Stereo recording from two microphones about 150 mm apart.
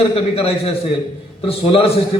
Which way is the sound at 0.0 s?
40° left (ahead or behind).